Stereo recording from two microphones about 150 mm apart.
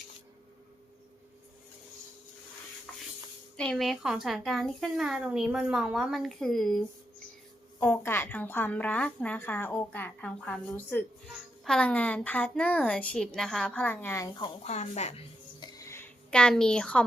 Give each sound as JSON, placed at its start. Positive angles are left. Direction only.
{"t": 2.9, "sound": "a sound", "side_deg": 5}
{"t": 3.6, "sound": "speech", "side_deg": 5}
{"t": 7.8, "sound": "a woman's voice", "side_deg": 10}
{"t": 14.6, "sound": "speech", "side_deg": 45}
{"t": 15.6, "sound": "music", "side_deg": 20}
{"t": 16.3, "sound": "speech", "side_deg": 5}